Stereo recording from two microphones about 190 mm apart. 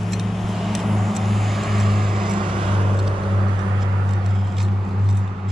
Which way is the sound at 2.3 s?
25° right (ahead or behind).